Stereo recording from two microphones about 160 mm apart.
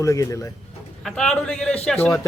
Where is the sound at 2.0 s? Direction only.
15° left (ahead or behind).